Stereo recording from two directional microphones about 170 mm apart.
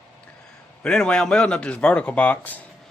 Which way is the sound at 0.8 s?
5° left (ahead or behind).